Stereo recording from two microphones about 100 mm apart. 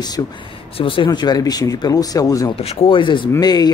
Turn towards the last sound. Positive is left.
turn(degrees=45)  # may be behind; listen again after turning